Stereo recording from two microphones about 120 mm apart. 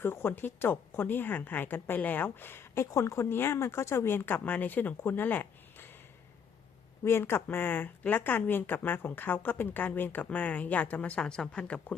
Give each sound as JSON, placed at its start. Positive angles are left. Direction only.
{"t": 0.0, "sound": "speech", "side_deg": 20}
{"t": 7.0, "sound": "speech", "side_deg": 20}